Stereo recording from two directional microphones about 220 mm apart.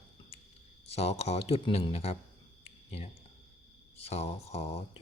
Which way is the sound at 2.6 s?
30° left (ahead or behind).